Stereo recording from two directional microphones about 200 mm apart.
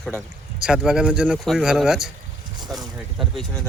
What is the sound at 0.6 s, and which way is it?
Speech, 5° right (ahead or behind).